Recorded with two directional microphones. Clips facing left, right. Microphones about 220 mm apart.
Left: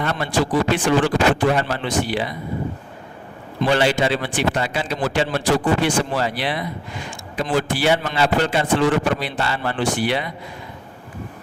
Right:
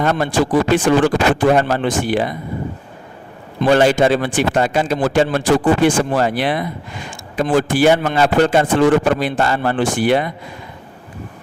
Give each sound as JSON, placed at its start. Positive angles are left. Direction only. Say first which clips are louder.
{"t": 0.0, "sound": "a man's voice", "louder": "right 5 dB", "side_deg": -45}
{"t": 3.6, "sound": "a man's voice", "louder": "right 6 dB", "side_deg": -45}